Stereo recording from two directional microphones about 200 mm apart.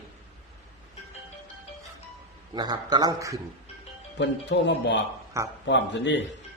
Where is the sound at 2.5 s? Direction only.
20° right (ahead or behind).